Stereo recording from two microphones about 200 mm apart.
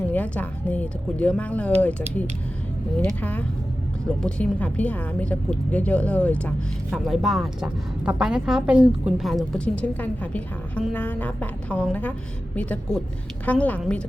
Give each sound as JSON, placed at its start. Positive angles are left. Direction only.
{"t": 0.1, "sound": "a woman's voice", "side_deg": 10}